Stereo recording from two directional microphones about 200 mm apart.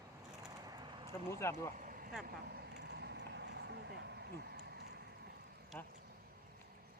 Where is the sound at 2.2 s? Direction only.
50° right (ahead or behind).